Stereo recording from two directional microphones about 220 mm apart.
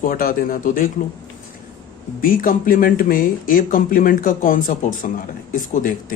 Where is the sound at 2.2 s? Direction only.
40° left (ahead or behind).